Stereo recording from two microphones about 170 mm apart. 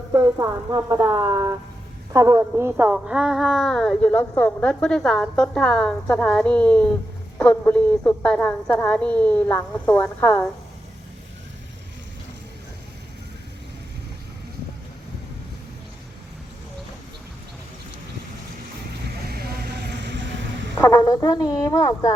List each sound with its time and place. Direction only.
0.1 s a woman's voice: 20° right (ahead or behind); by 10.5 s 15° left (ahead or behind)
19.0 s vehicle: 65° right (ahead or behind); by 20.7 s 90° right
20.7 s speech: 15° left (ahead or behind)